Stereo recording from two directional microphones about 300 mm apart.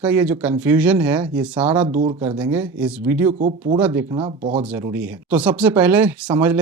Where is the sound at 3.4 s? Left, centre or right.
Right.